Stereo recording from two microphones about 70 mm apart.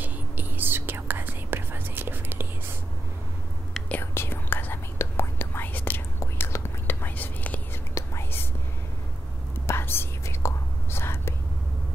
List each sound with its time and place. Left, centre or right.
0.0 s whispering: right
4.0 s whispering: left
6.1 s whispering: left
7.9 s whispering: left
9.7 s whispering: left